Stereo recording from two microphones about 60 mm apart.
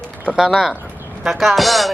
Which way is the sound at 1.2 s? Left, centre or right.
Centre.